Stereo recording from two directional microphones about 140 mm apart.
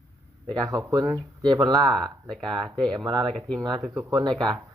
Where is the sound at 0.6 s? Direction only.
25° right (ahead or behind).